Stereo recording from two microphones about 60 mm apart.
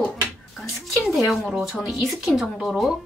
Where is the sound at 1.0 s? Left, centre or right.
Centre.